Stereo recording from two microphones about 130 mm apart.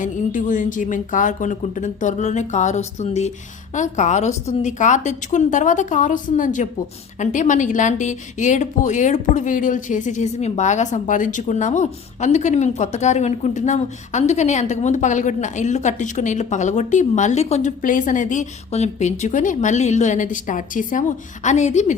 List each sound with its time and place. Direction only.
0.0 s a woman's voice: 75° left (ahead or behind)
21.4 s a woman's voice: 65° left (ahead or behind)